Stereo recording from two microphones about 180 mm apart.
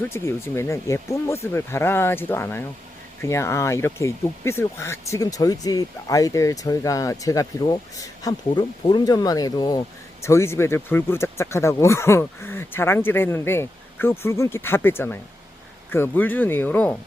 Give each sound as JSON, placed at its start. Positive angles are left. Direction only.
{"t": 0.0, "sound": "speech", "side_deg": 15}